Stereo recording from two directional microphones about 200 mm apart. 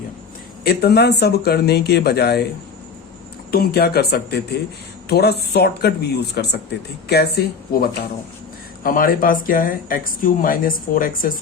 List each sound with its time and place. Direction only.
0.6 s speech: 50° left (ahead or behind)
3.5 s speech: 50° left (ahead or behind)